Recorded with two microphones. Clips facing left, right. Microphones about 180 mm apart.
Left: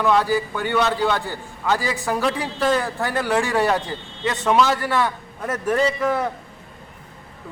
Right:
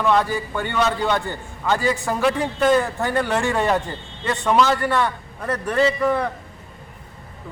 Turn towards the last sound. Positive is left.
turn(degrees=5)  # may be behind; listen again after turning